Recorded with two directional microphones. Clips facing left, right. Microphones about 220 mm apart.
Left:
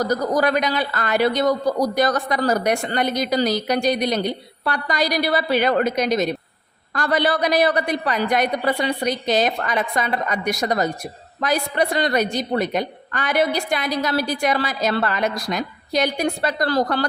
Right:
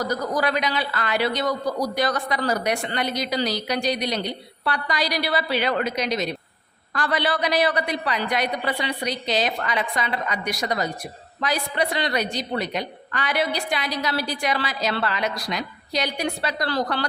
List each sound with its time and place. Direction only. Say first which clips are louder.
0.0 s a man's voice: left 5 dB; 45° left (ahead or behind)